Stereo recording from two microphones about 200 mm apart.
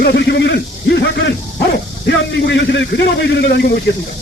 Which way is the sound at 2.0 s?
60° left (ahead or behind).